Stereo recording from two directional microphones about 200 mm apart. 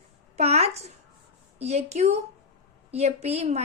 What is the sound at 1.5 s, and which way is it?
A woman's voice, 30° right (ahead or behind).